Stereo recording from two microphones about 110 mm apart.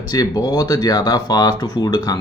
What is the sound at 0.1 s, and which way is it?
Speech, 35° left (ahead or behind).